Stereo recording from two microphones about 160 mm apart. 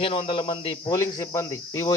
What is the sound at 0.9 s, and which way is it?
Speech, 20° left (ahead or behind).